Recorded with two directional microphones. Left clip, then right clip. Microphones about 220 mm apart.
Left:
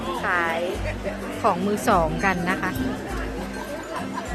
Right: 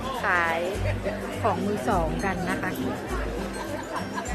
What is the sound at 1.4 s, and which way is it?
Speech, 25° left (ahead or behind).